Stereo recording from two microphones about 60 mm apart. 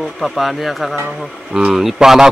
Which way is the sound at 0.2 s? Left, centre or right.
Centre.